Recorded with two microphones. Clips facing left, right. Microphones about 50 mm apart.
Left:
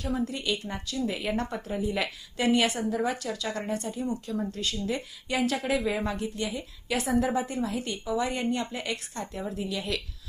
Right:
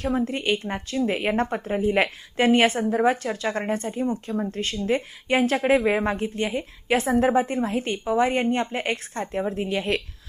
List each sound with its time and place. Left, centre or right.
0.3 s speech: right